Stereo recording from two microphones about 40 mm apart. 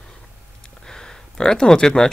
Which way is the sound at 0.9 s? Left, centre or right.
Centre.